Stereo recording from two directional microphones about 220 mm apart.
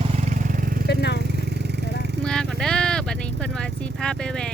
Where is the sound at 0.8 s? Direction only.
50° left (ahead or behind).